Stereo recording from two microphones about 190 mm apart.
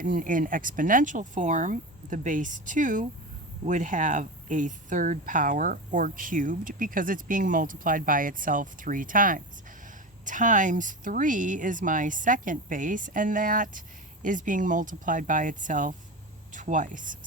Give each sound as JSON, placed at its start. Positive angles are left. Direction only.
{"t": 0.0, "sound": "speech", "side_deg": -45}